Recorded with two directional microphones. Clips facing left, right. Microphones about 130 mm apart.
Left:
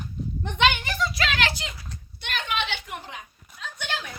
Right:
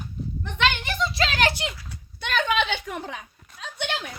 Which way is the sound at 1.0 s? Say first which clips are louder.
Right 4 dB; 30° right (ahead or behind).